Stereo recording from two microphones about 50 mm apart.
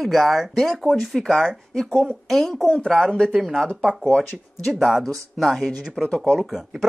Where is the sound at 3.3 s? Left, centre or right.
Centre.